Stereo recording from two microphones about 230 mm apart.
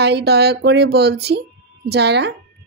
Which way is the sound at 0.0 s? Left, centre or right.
Right.